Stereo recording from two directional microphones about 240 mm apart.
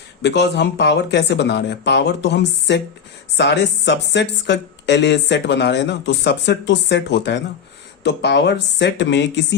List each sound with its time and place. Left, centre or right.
0.2 s speech: left